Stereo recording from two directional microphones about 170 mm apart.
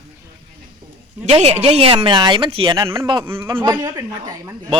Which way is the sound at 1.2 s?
40° right (ahead or behind).